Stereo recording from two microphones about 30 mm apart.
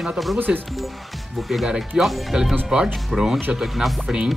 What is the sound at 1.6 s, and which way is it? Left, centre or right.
Speech, right.